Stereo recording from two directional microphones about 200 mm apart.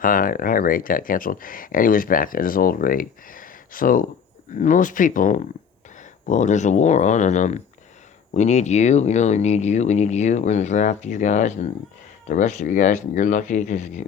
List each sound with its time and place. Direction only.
0.0 s speech: 45° left (ahead or behind)